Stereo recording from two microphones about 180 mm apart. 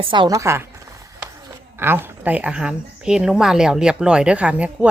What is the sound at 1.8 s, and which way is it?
A woman's voice, 10° right (ahead or behind).